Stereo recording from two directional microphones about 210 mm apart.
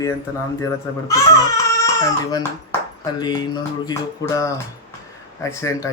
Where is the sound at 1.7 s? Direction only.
15° left (ahead or behind).